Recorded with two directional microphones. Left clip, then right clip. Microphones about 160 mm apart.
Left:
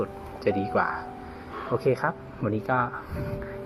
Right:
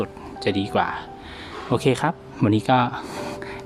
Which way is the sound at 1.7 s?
40° right (ahead or behind).